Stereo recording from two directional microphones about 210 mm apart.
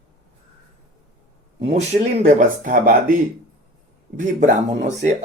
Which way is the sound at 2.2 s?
40° right (ahead or behind).